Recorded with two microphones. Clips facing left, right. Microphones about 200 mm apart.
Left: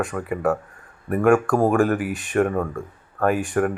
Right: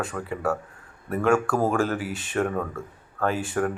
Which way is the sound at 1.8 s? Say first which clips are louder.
Left 6 dB; 60° left (ahead or behind).